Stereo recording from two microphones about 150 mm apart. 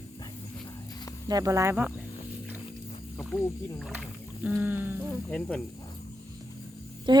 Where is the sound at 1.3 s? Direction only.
25° right (ahead or behind).